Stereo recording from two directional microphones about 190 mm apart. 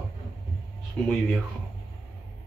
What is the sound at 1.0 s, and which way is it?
Speech, 5° left (ahead or behind).